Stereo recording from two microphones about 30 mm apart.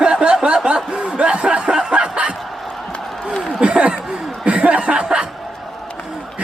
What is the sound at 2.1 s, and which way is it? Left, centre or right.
Bow-wow, right.